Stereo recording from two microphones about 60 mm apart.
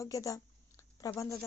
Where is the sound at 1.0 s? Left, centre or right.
Left.